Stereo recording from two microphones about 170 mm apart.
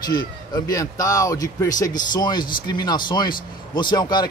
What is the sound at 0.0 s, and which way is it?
Speech, 25° left (ahead or behind).